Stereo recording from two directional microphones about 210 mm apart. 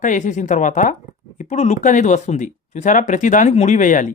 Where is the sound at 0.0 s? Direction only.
35° left (ahead or behind).